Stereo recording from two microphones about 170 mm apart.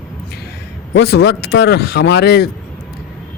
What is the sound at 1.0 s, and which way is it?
Speech, 90° left.